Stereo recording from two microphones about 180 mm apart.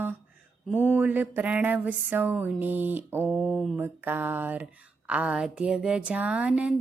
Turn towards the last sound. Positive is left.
turn(degrees=-5)  # may be behind; listen again after turning